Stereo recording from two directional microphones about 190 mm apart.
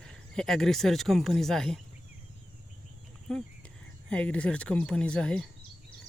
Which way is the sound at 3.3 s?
Centre (ahead or behind).